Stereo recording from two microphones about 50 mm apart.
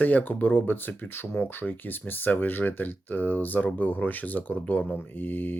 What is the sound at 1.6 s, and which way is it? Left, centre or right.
Speech, left.